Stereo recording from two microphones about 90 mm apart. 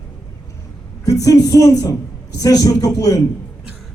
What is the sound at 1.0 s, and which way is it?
A woman's voice, 40° left (ahead or behind).